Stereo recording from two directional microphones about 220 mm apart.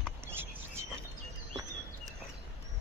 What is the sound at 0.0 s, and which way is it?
Bird, 10° right (ahead or behind).